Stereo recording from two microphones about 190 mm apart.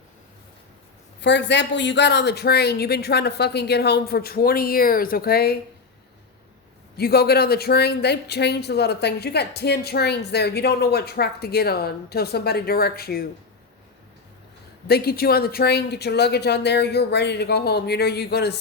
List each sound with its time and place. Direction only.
1.2 s speech: 65° left (ahead or behind)
6.9 s speech: 55° left (ahead or behind)
14.8 s speech: 55° left (ahead or behind)